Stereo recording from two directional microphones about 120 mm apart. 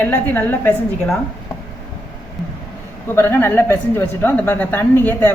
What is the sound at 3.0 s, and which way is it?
A woman's voice, 20° left (ahead or behind).